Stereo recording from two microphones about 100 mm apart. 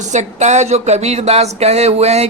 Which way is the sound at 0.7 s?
90° right.